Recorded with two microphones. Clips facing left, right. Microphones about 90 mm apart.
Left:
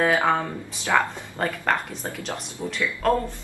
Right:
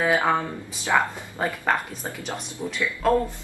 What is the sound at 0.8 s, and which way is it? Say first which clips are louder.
A woman's voice: even; 15° right (ahead or behind).